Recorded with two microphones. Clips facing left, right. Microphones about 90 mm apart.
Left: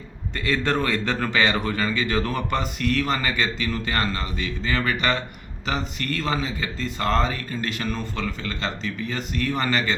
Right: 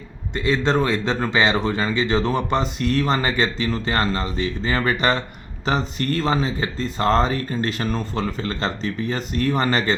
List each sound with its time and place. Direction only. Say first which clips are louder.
0.3 s a man's voice: right 4 dB; 20° right (ahead or behind)